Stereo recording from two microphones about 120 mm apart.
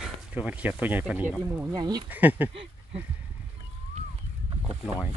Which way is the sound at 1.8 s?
35° right (ahead or behind).